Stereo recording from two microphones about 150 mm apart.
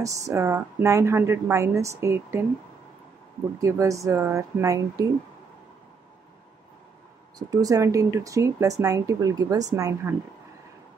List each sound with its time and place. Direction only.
0.0 s a woman's voice: 20° right (ahead or behind)
3.6 s a woman's voice: 20° right (ahead or behind)
7.3 s a woman's voice: 25° right (ahead or behind)